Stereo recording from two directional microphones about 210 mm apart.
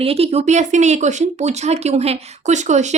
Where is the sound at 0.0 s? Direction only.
30° right (ahead or behind).